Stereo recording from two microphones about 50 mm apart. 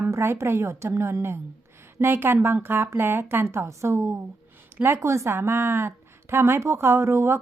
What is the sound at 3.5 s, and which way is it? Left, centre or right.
Speech, right.